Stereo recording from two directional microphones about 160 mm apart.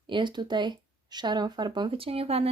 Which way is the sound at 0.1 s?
30° right (ahead or behind).